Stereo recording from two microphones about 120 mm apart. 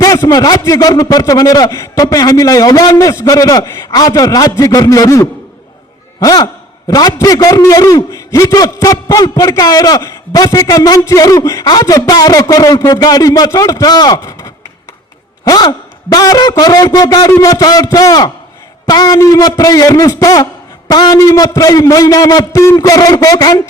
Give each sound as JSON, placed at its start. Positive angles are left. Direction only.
{"t": 0.0, "sound": "a man's voice", "side_deg": 30}